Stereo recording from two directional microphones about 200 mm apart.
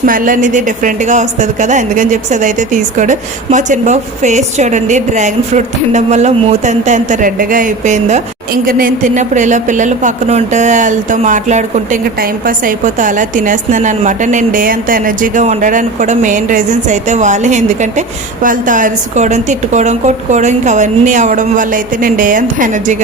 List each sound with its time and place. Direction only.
0.0 s speech: 45° right (ahead or behind)